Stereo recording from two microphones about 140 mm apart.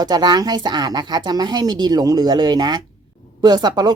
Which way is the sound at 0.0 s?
30° right (ahead or behind).